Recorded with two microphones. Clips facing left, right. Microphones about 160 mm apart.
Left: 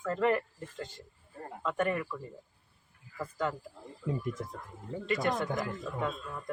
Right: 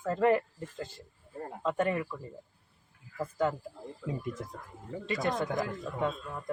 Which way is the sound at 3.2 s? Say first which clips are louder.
Right 4 dB; 25° right (ahead or behind).